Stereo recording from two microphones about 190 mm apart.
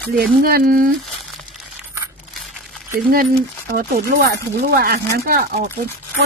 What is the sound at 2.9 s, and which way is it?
Speech, 50° right (ahead or behind).